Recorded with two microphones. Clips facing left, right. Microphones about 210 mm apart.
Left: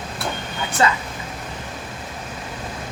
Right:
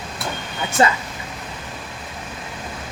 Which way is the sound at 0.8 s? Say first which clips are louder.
Right 2 dB; 30° right (ahead or behind).